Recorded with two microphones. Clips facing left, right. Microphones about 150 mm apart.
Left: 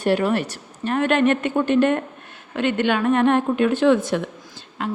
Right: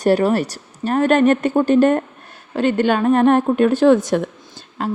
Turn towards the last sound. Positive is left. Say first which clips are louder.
# right 3 dB
turn(degrees=-40)  # may be behind; listen again after turning